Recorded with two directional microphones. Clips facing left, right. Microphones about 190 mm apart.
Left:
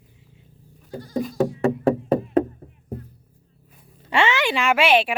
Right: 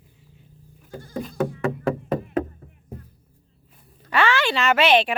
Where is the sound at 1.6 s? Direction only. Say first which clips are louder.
Left 5 dB; 35° left (ahead or behind).